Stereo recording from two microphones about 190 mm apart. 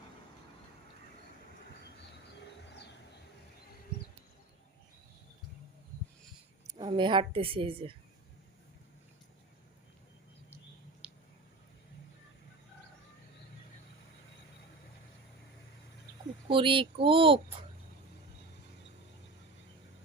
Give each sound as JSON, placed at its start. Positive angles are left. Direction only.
{"t": 6.7, "sound": "a woman's voice", "side_deg": -25}
{"t": 11.0, "sound": "a sound", "side_deg": -5}
{"t": 16.5, "sound": "a woman's voice", "side_deg": -25}